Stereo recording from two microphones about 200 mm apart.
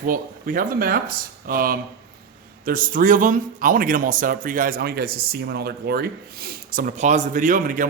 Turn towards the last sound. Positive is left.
turn(degrees=-45)  # may be behind; listen again after turning